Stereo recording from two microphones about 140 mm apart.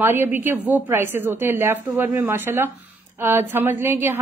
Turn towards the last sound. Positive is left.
turn(degrees=-15)  # may be behind; listen again after turning